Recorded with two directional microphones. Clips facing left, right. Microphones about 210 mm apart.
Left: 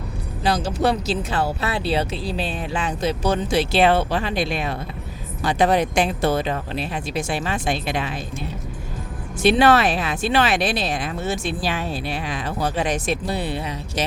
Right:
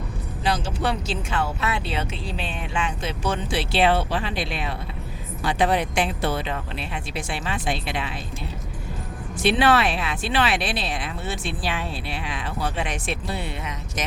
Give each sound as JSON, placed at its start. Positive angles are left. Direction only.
{"t": 0.4, "sound": "speech", "side_deg": 40}
{"t": 9.4, "sound": "speech", "side_deg": 40}